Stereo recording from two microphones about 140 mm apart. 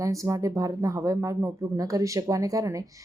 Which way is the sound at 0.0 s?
25° right (ahead or behind).